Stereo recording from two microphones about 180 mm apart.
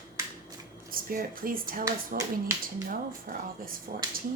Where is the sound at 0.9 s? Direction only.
50° right (ahead or behind).